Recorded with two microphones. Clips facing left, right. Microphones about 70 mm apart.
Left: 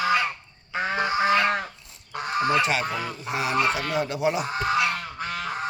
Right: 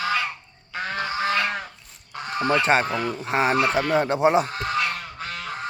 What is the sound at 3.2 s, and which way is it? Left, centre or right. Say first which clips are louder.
Speech: right 3 dB; right.